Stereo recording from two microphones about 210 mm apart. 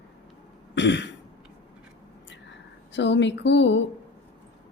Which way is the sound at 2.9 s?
55° left (ahead or behind).